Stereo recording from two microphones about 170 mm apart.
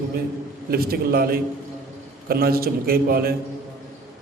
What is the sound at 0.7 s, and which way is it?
A man's voice, 65° right (ahead or behind).